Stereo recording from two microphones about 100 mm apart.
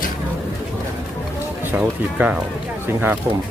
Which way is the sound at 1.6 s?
20° right (ahead or behind).